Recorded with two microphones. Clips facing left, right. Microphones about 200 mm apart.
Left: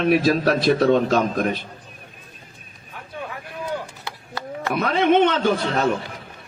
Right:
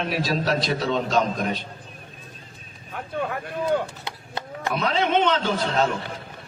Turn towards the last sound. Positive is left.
turn(degrees=55)  # may be behind; listen again after turning